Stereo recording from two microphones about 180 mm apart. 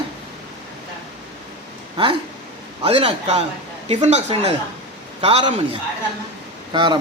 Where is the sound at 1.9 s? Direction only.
30° right (ahead or behind).